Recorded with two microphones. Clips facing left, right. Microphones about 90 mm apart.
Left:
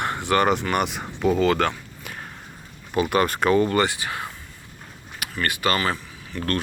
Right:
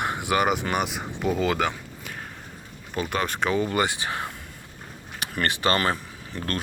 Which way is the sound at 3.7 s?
20° right (ahead or behind).